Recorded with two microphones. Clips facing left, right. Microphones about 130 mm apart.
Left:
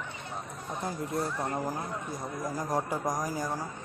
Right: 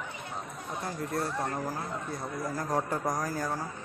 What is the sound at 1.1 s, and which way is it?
Speech, 20° left (ahead or behind).